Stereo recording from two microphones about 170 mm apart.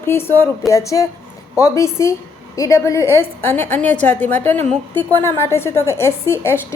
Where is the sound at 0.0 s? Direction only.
15° left (ahead or behind).